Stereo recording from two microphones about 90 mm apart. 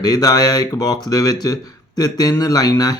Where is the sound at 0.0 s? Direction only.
45° left (ahead or behind).